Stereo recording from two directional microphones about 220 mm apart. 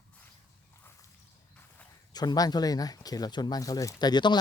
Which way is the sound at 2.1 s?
20° left (ahead or behind).